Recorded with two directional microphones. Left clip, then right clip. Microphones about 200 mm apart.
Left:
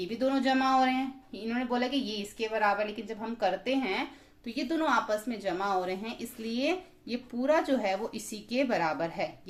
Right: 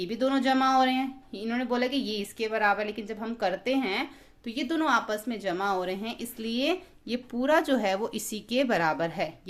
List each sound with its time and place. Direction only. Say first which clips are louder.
0.0 s a woman's voice: right 2 dB; 30° right (ahead or behind)